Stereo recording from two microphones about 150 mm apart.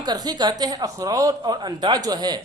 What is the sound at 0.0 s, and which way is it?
Speech, 30° right (ahead or behind).